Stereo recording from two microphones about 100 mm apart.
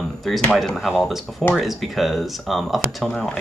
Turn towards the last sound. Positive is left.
turn(degrees=5)  # may be behind; listen again after turning